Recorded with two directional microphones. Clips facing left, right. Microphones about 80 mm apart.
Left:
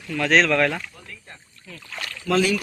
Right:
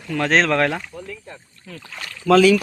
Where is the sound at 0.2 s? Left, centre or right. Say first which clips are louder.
Right 1 dB; right.